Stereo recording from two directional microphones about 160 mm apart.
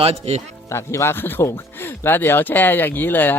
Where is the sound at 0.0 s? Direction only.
40° right (ahead or behind).